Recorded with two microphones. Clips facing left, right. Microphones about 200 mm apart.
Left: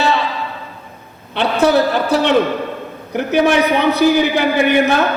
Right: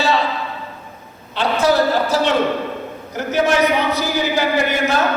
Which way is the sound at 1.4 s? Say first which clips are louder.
Left 3 dB; 60° left (ahead or behind).